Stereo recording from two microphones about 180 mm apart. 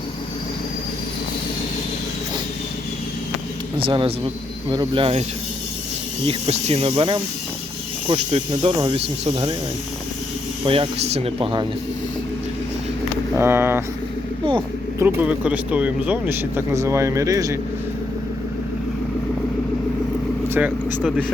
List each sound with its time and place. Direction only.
3.8 s speech: 30° right (ahead or behind)
6.2 s speech: 35° right (ahead or behind)
10.7 s speech: 30° right (ahead or behind)
13.3 s speech: 15° right (ahead or behind)
14.9 s speech: 10° right (ahead or behind)
20.5 s speech: 10° right (ahead or behind)